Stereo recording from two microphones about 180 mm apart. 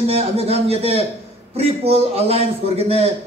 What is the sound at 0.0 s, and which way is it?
A man's voice, 35° right (ahead or behind).